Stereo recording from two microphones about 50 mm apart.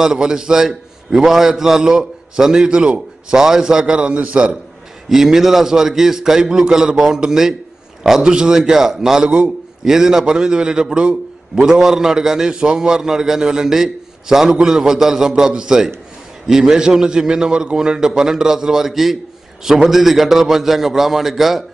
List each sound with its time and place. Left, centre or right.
0.0 s a man's voice: centre
5.1 s a man's voice: centre
9.2 s a man's voice: right
9.8 s a man's voice: centre